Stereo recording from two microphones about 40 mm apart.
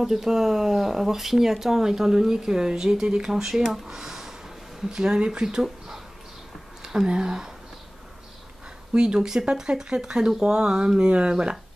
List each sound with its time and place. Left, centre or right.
0.0 s speech: centre
3.8 s a sound: centre
4.8 s speech: centre
8.9 s speech: right